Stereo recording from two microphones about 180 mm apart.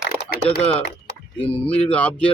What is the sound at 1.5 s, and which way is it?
Speech, 5° left (ahead or behind).